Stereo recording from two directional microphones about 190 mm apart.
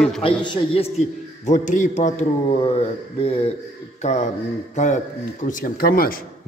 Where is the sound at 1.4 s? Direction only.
40° left (ahead or behind).